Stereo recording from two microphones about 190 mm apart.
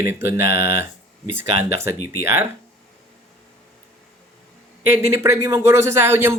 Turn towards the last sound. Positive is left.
turn(degrees=-10)  # may be behind; listen again after turning